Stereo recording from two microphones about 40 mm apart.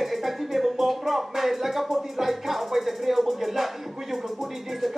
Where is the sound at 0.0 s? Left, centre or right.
Centre.